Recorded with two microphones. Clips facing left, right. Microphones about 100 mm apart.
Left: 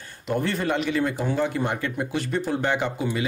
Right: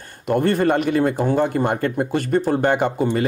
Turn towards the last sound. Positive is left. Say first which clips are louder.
# right 6 dB
turn(degrees=-50)  # may be behind; listen again after turning